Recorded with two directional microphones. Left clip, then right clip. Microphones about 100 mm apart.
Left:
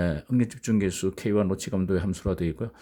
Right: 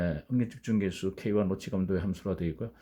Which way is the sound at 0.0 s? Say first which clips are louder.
Left 5 dB; 55° left (ahead or behind).